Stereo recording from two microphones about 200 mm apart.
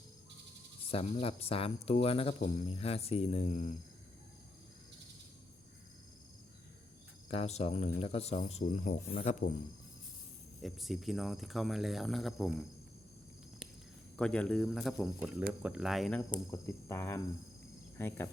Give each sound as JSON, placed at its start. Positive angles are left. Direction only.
{"t": 0.9, "sound": "speech", "side_deg": 30}
{"t": 7.3, "sound": "speech", "side_deg": 30}
{"t": 10.6, "sound": "speech", "side_deg": 0}
{"t": 14.2, "sound": "speech", "side_deg": 5}
{"t": 16.5, "sound": "cricket", "side_deg": 15}